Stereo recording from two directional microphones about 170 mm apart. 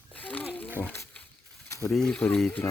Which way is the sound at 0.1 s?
10° left (ahead or behind).